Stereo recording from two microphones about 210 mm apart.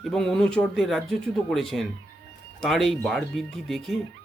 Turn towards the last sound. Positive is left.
turn(degrees=0)  # may be behind; listen again after turning